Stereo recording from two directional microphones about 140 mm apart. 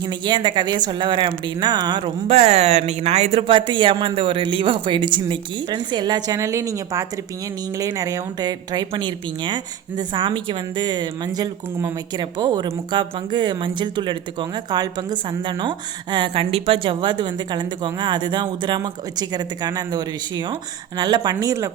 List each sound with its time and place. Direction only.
0.0 s speech: 35° right (ahead or behind)
2.3 s a woman's voice: 50° right (ahead or behind); by 21.7 s 25° right (ahead or behind)